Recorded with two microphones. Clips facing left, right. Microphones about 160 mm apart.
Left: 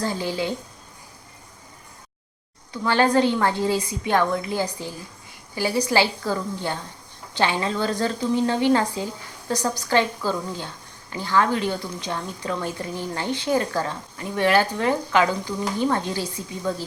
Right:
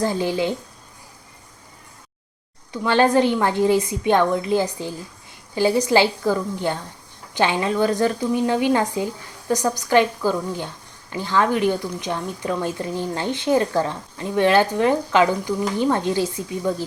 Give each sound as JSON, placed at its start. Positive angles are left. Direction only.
{"t": 0.0, "sound": "speech", "side_deg": -20}
{"t": 2.7, "sound": "speech", "side_deg": -20}